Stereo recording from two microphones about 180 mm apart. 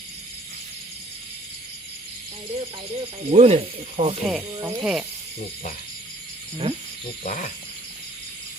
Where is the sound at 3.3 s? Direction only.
35° right (ahead or behind).